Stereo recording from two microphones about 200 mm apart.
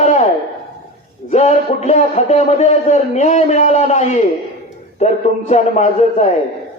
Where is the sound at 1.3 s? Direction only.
35° left (ahead or behind).